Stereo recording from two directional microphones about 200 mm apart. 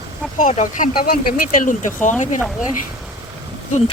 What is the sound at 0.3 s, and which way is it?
Speech, 40° left (ahead or behind).